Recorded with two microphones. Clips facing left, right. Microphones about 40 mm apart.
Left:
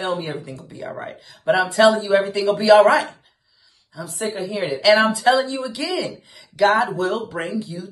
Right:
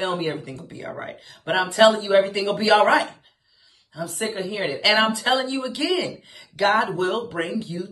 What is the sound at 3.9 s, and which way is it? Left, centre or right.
Speech, right.